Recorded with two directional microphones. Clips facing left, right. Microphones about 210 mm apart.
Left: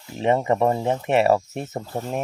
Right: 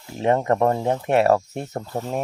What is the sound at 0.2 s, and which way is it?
Speech, centre (ahead or behind).